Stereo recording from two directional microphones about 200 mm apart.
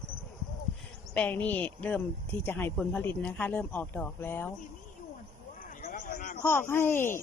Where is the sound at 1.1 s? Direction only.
10° left (ahead or behind).